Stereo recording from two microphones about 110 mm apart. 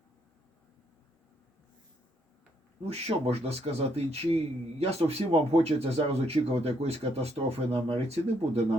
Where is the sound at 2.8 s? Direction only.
70° right (ahead or behind).